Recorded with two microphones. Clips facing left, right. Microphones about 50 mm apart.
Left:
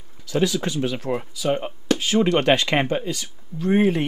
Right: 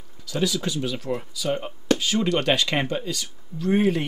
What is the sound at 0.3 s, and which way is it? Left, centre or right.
Speech, left.